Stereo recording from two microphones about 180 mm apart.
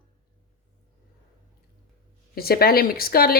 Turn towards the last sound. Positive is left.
turn(degrees=55)  # may be behind; listen again after turning